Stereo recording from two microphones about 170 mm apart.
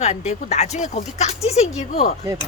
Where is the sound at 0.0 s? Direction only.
45° left (ahead or behind).